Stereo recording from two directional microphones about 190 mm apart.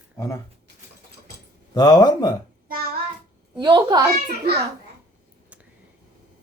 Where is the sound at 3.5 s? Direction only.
25° right (ahead or behind).